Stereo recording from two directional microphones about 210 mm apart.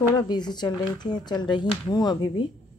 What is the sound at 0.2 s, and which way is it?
Speech, 20° left (ahead or behind).